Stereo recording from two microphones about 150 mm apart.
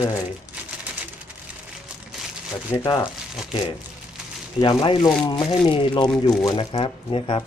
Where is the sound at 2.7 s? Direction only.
25° left (ahead or behind).